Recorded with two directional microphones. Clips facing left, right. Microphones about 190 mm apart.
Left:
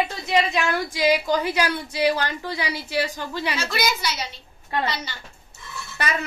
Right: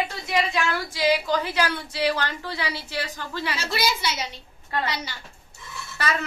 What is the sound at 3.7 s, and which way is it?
Speech, 30° right (ahead or behind).